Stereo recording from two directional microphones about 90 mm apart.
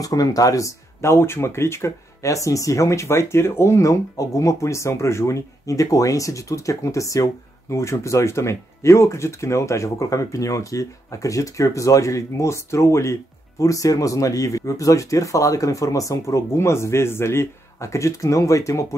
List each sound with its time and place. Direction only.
0.0 s speech: 40° left (ahead or behind)